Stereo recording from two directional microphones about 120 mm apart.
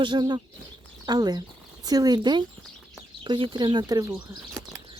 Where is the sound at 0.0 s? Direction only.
40° right (ahead or behind).